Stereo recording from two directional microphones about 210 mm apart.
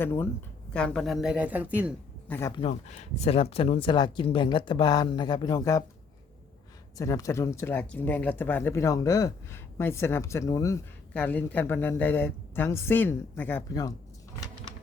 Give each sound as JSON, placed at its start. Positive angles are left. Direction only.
{"t": 0.0, "sound": "speech", "side_deg": 10}
{"t": 2.6, "sound": "speech", "side_deg": 30}
{"t": 6.9, "sound": "speech", "side_deg": 15}